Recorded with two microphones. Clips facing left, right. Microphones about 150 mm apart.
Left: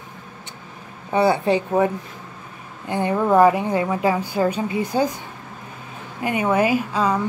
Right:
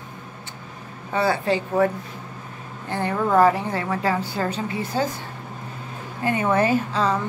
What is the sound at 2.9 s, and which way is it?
A woman's voice, 15° left (ahead or behind).